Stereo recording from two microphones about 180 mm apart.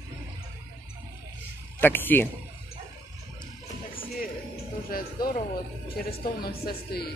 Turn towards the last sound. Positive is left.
turn(degrees=60)  # may be behind; listen again after turning